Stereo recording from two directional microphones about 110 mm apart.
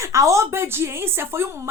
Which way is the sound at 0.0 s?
30° right (ahead or behind).